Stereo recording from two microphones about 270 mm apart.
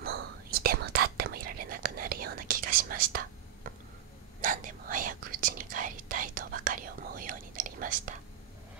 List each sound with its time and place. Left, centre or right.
0.0 s whispering: right